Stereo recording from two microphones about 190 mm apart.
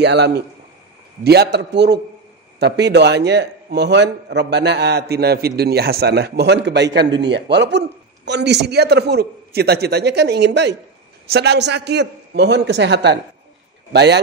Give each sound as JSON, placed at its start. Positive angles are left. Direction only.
{"t": 0.0, "sound": "a man's voice", "side_deg": -65}